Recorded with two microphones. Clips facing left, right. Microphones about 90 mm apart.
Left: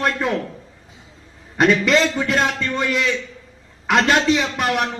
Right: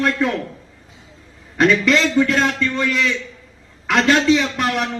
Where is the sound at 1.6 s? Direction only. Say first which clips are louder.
Even; 35° left (ahead or behind).